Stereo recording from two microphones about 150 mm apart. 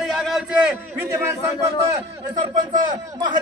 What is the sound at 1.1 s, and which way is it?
Speech, 20° right (ahead or behind).